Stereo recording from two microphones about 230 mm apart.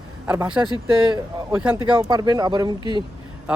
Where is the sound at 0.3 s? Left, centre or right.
Centre.